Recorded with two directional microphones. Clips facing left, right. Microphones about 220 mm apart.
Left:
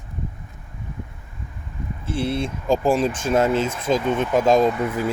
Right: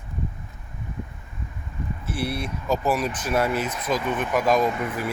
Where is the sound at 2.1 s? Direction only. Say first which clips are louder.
Left 5 dB; 25° left (ahead or behind).